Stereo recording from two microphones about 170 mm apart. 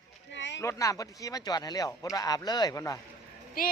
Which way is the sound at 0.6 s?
20° left (ahead or behind).